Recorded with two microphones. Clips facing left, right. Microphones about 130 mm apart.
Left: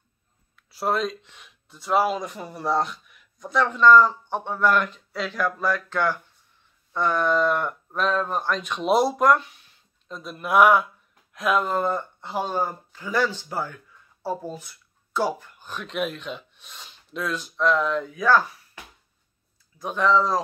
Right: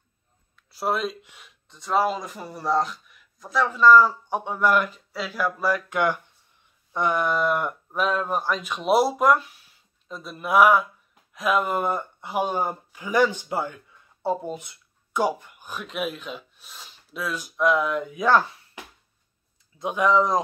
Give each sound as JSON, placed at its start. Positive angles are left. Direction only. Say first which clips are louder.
{"t": 0.6, "sound": "speech", "louder": "left 1 dB", "side_deg": 0}
{"t": 11.7, "sound": "speech", "louder": "left 1 dB", "side_deg": -15}
{"t": 19.8, "sound": "speech", "louder": "right 1 dB", "side_deg": -15}